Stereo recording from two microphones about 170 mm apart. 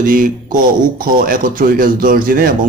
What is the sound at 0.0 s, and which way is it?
Speech, 55° right (ahead or behind).